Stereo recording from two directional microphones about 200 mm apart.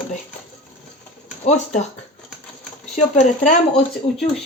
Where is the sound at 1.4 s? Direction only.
35° left (ahead or behind).